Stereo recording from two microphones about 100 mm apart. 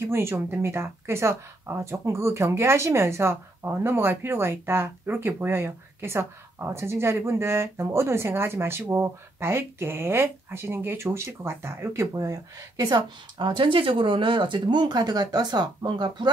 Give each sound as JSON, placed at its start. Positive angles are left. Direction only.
{"t": 0.0, "sound": "speech", "side_deg": -25}